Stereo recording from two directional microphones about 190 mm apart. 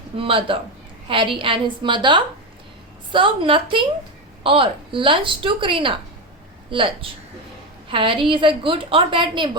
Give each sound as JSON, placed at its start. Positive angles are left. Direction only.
{"t": 0.2, "sound": "a woman's voice", "side_deg": -30}